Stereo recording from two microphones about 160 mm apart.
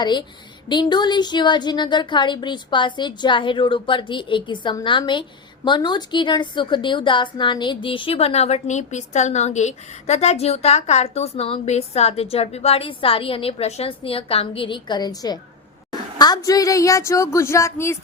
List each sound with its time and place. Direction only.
0.0 s a woman's voice: 30° left (ahead or behind)